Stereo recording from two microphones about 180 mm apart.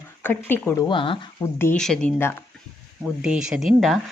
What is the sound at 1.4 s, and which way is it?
A woman's voice, 15° left (ahead or behind).